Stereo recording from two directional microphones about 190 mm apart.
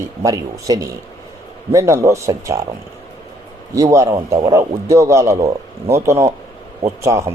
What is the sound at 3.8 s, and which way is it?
Speech, 15° right (ahead or behind).